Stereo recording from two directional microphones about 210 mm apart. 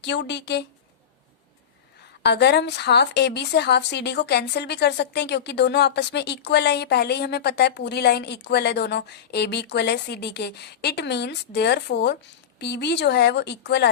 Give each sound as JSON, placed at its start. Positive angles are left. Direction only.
{"t": 0.0, "sound": "speech", "side_deg": 55}
{"t": 2.2, "sound": "a woman's voice", "side_deg": 50}